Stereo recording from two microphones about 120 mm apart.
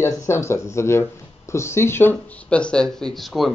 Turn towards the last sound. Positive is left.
turn(degrees=0)  # may be behind; listen again after turning